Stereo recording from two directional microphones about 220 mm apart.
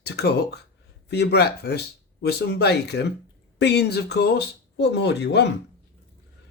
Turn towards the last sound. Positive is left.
turn(degrees=50)  # may be behind; listen again after turning